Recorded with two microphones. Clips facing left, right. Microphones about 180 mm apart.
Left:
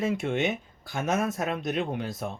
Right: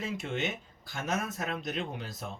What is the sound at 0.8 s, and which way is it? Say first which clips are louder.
Speech: left 6 dB; 65° left (ahead or behind).